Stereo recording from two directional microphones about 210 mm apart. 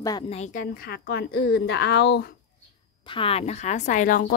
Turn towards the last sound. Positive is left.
turn(degrees=40)  # may be behind; listen again after turning